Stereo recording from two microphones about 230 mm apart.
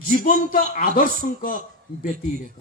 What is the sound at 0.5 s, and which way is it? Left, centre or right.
A man's voice, left.